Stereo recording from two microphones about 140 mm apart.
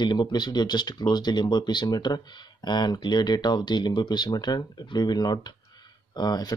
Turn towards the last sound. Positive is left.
turn(degrees=30)  # may be behind; listen again after turning